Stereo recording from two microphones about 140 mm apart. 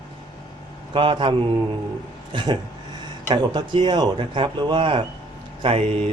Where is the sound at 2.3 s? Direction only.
35° right (ahead or behind).